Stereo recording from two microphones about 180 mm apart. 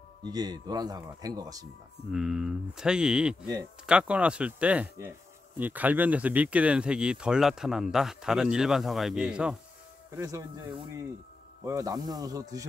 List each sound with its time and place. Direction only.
0.2 s speech: 20° right (ahead or behind)
2.0 s speech: 5° right (ahead or behind)
10.1 s speech: 20° right (ahead or behind)